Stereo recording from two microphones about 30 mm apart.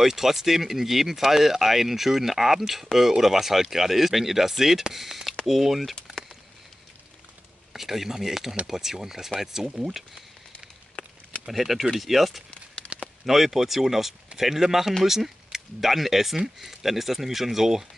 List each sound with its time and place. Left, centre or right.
0.0 s speech: centre
7.7 s speech: centre
11.0 s a sound: left
11.4 s speech: centre
12.4 s a sound: left
13.2 s speech: centre